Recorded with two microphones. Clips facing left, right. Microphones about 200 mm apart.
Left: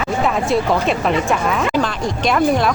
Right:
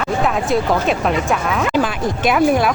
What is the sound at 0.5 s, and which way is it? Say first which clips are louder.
Speech: even; centre (ahead or behind).